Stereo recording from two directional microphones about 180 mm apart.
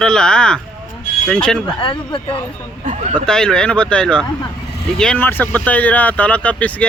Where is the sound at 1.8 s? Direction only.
30° left (ahead or behind).